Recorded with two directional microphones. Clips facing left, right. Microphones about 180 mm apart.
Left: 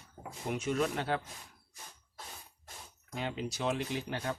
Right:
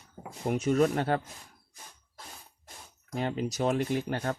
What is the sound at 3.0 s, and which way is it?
Speech, 45° right (ahead or behind).